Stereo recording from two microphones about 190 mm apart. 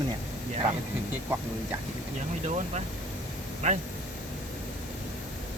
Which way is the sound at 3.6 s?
35° right (ahead or behind).